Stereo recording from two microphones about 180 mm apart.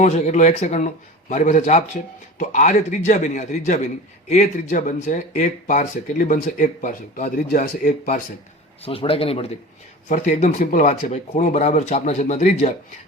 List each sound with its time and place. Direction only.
0.0 s speech: 40° left (ahead or behind)
8.8 s speech: 30° left (ahead or behind)